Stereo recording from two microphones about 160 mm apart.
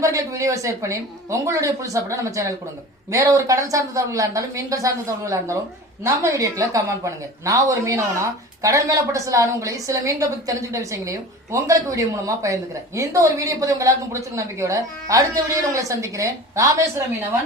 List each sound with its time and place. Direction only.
0.0 s speech: 20° right (ahead or behind)